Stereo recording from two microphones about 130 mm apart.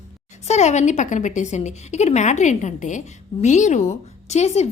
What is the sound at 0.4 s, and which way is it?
A woman's voice, 60° left (ahead or behind).